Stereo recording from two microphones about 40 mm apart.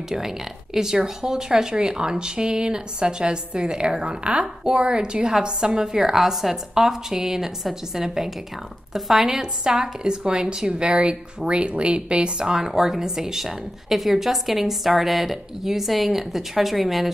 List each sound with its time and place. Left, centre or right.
0.7 s a woman's voice: centre
12.6 s a woman's voice: centre